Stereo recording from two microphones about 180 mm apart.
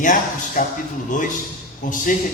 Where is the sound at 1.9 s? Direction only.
45° left (ahead or behind).